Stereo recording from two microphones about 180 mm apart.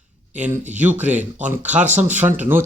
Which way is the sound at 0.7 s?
10° right (ahead or behind).